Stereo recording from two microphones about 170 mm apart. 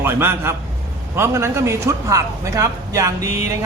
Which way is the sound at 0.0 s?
15° right (ahead or behind).